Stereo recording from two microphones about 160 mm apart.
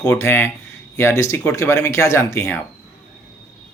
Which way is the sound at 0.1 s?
15° left (ahead or behind).